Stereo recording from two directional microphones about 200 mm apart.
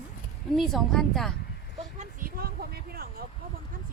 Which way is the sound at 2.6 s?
50° right (ahead or behind).